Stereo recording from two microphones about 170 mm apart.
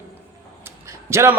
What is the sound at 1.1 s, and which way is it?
Speech, 15° right (ahead or behind).